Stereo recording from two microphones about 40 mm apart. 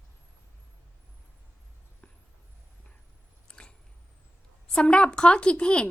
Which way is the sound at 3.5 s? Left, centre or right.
Left.